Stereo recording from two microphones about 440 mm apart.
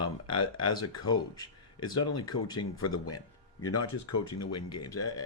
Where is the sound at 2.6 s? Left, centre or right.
Left.